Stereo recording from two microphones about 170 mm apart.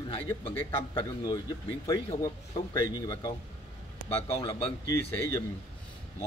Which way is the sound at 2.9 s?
20° left (ahead or behind).